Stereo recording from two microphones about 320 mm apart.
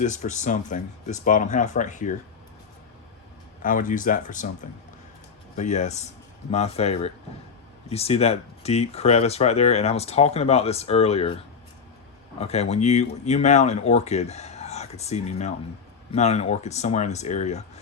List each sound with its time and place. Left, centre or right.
0.0 s speech: left
3.6 s speech: left
5.5 s speech: left
12.4 s speech: centre